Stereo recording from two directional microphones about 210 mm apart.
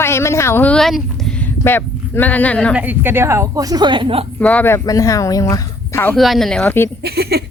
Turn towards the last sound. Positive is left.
turn(degrees=-50)  # may be behind; listen again after turning